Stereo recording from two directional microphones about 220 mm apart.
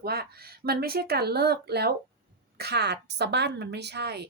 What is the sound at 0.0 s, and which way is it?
A woman's voice, 45° right (ahead or behind).